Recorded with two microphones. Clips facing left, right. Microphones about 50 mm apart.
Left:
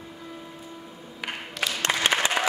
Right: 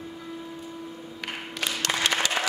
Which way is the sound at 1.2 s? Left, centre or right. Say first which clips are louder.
Left 2 dB; centre.